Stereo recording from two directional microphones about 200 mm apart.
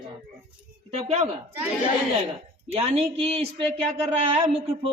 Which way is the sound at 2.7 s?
30° right (ahead or behind).